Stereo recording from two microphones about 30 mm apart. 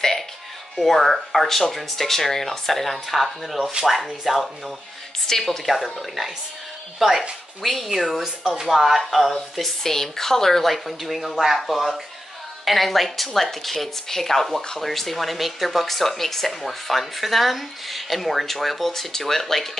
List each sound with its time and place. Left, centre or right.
0.8 s a woman's voice: centre
5.3 s speech: centre
5.7 s a woman's voice: centre
9.6 s speech: centre
10.7 s a woman's voice: centre
12.6 s a woman's voice: centre